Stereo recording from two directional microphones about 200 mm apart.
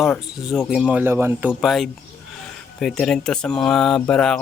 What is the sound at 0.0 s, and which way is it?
A man's voice, centre (ahead or behind).